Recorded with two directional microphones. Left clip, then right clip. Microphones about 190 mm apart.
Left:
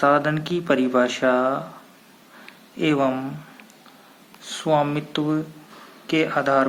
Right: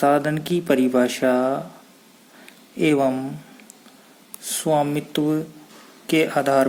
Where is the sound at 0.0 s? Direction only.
50° right (ahead or behind).